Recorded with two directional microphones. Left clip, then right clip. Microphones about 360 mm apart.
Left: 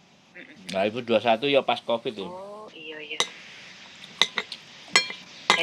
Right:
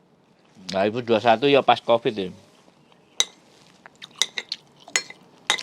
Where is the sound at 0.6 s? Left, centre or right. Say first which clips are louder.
Right 4 dB; centre; by 2.3 s right.